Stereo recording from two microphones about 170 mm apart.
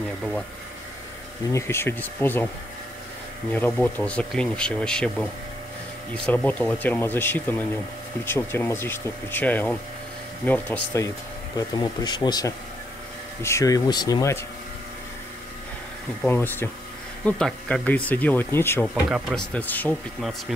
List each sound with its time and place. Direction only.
1.5 s speech: 15° left (ahead or behind)
3.5 s speech: 10° left (ahead or behind)
11.5 s speech: 25° left (ahead or behind)
16.3 s speech: 15° left (ahead or behind)
19.0 s speech: 5° right (ahead or behind)
19.5 s speech: 10° left (ahead or behind)